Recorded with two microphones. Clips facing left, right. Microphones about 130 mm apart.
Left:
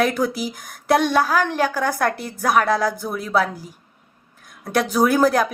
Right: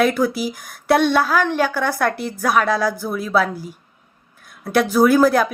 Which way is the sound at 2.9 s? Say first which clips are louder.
Right 2 dB; 20° left (ahead or behind).